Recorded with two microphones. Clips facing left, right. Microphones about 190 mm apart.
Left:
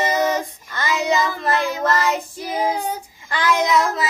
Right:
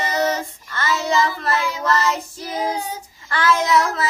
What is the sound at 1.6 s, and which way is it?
Child singing, 50° left (ahead or behind).